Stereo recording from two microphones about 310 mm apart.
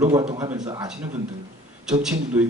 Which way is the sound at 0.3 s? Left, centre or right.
Right.